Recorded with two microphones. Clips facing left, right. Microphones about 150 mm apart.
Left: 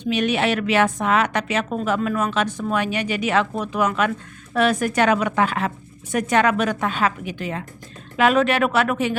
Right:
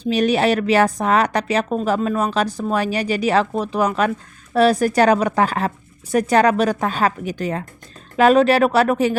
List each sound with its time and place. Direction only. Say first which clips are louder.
0.0 s a woman's voice: right 4 dB; 35° right (ahead or behind)